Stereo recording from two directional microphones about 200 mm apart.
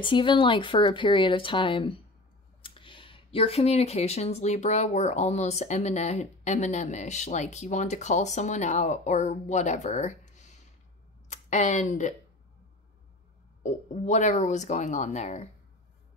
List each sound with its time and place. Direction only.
0.0 s speech: 25° left (ahead or behind)
13.6 s speech: 40° left (ahead or behind)